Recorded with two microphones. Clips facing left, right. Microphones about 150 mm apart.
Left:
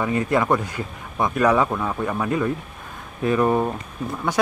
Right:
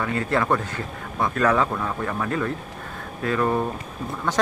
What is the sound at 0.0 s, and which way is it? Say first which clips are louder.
Speech: left 3 dB; 15° left (ahead or behind).